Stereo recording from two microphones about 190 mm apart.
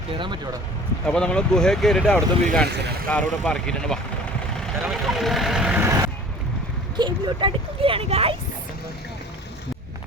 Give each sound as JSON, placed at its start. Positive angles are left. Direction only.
{"t": 0.1, "sound": "speech", "side_deg": -25}
{"t": 1.0, "sound": "speech", "side_deg": 5}
{"t": 2.6, "sound": "speech", "side_deg": -60}
{"t": 3.1, "sound": "speech", "side_deg": 5}
{"t": 6.9, "sound": "speech", "side_deg": -25}